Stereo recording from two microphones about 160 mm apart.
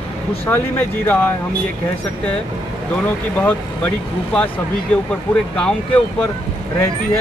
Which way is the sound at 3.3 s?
10° left (ahead or behind).